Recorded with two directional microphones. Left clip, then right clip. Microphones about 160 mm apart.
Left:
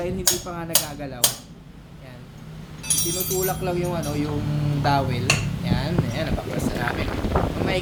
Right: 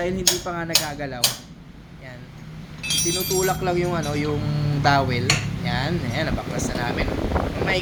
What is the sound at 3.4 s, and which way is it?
Speech, 5° right (ahead or behind).